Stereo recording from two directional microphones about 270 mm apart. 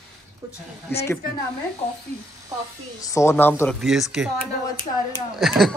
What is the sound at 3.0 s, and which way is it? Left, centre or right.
A woman's voice, centre.